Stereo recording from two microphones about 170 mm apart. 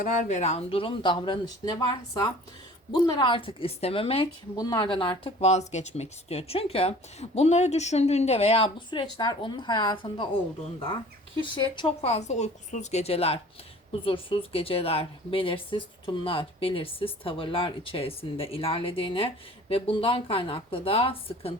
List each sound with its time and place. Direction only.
0.0 s speech: 45° left (ahead or behind); by 10.2 s 30° left (ahead or behind)
11.6 s speech: 25° left (ahead or behind)
12.0 s speech: 40° left (ahead or behind)